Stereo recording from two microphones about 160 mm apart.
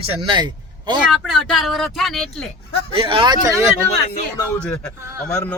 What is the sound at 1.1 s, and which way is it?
Speech, centre (ahead or behind).